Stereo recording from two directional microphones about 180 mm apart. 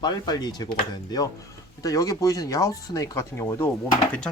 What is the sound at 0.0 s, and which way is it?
Speech, 20° left (ahead or behind).